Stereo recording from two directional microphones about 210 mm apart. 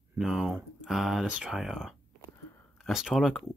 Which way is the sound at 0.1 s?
5° right (ahead or behind).